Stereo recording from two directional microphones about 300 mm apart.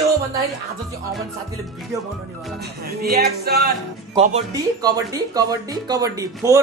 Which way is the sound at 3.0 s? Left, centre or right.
Right.